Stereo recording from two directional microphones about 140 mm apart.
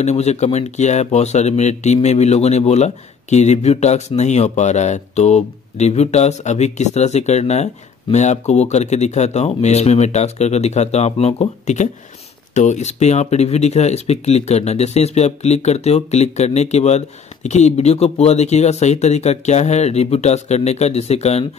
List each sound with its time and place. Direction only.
0.0 s speech: 50° left (ahead or behind)